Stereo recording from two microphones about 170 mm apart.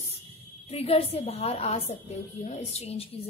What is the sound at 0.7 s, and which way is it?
A woman's voice, 35° left (ahead or behind).